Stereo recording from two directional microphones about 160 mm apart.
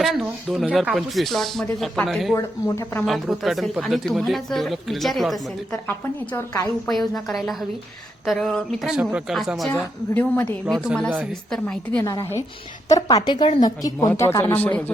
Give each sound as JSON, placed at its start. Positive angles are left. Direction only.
{"t": 0.2, "sound": "speech", "side_deg": -5}
{"t": 2.3, "sound": "speech", "side_deg": 15}
{"t": 3.1, "sound": "speech", "side_deg": 0}
{"t": 6.3, "sound": "speech", "side_deg": 20}
{"t": 6.8, "sound": "speech", "side_deg": 0}
{"t": 9.6, "sound": "speech", "side_deg": 10}
{"t": 12.0, "sound": "speech", "side_deg": 20}
{"t": 14.2, "sound": "speech", "side_deg": 15}